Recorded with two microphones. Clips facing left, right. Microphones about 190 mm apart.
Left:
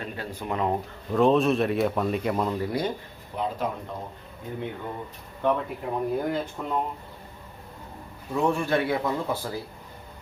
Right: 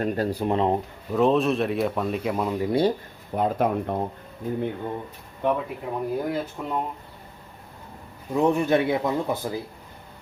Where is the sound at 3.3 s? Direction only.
55° right (ahead or behind).